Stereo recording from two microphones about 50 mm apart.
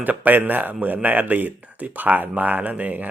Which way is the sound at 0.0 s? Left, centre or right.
Right.